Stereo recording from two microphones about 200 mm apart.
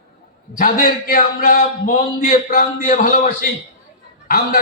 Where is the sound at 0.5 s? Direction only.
45° left (ahead or behind).